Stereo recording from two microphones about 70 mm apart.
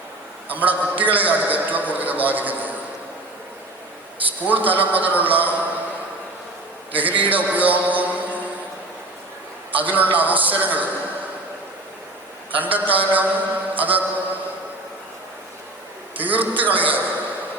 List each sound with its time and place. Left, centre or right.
0.4 s a man's voice: right
4.2 s a man's voice: right
6.9 s a man's voice: right
9.7 s a man's voice: right
12.5 s a man's voice: right
16.1 s a man's voice: right